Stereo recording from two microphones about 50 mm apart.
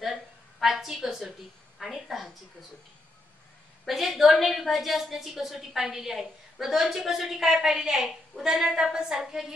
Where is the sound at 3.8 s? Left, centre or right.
Centre.